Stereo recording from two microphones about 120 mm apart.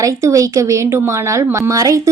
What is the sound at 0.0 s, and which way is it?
A woman's voice, 25° right (ahead or behind).